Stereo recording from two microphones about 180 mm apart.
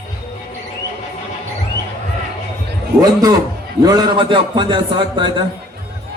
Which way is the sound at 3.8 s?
25° right (ahead or behind).